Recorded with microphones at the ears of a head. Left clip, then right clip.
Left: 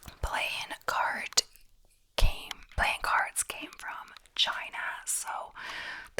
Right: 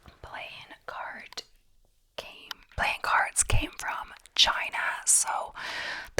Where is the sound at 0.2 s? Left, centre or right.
Left.